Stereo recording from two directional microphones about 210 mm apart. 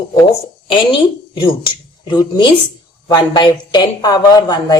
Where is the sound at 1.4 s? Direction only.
20° left (ahead or behind).